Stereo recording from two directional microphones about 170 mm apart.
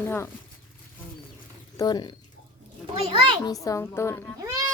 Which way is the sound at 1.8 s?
25° left (ahead or behind).